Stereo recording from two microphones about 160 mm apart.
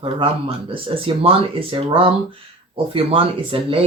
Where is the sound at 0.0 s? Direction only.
35° right (ahead or behind).